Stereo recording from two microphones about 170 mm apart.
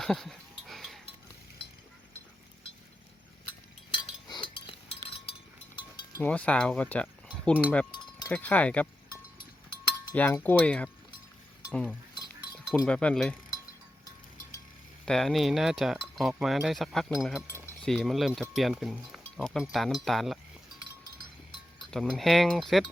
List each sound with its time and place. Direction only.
0.0 s goat: centre (ahead or behind)
3.9 s chink: 30° left (ahead or behind)
6.1 s speech: 10° left (ahead or behind)
10.2 s speech: 10° left (ahead or behind)
15.0 s speech: centre (ahead or behind)
21.8 s speech: 5° left (ahead or behind)